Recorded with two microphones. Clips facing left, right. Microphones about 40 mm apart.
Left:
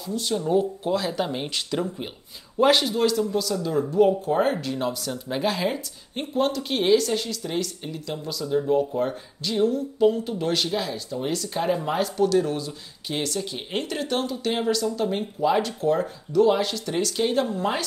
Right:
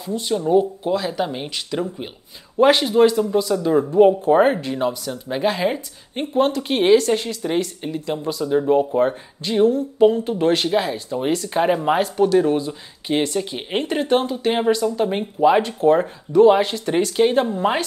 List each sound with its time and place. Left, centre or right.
0.5 s speech: centre
2.6 s a man's voice: centre